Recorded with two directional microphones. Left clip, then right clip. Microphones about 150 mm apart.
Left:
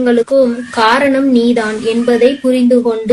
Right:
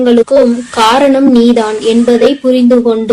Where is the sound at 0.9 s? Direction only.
30° right (ahead or behind).